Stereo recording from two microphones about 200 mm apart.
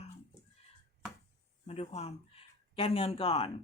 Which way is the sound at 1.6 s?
30° left (ahead or behind).